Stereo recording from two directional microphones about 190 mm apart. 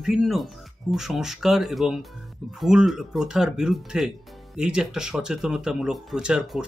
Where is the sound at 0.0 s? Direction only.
Centre (ahead or behind).